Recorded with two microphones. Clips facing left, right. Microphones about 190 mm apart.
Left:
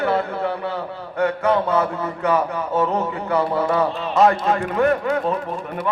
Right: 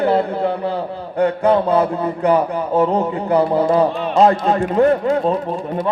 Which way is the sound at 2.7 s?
15° right (ahead or behind).